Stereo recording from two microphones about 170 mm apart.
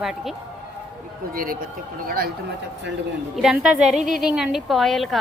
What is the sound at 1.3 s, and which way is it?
Speech, 55° right (ahead or behind).